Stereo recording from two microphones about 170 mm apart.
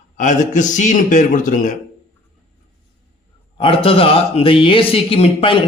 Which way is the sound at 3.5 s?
30° left (ahead or behind).